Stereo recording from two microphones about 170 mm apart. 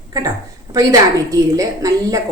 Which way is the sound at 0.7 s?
20° right (ahead or behind).